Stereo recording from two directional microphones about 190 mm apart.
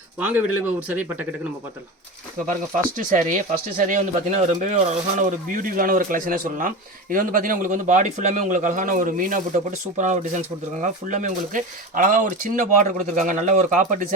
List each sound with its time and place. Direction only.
0.2 s speech: 10° right (ahead or behind)
2.7 s speech: 45° right (ahead or behind)